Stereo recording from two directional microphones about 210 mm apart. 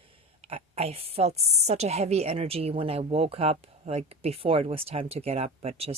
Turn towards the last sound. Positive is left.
turn(degrees=-30)  # may be behind; listen again after turning